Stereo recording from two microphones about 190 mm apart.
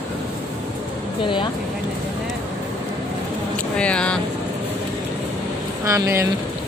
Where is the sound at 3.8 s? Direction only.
5° left (ahead or behind).